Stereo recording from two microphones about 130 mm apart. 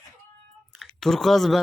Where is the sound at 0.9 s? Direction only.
5° left (ahead or behind).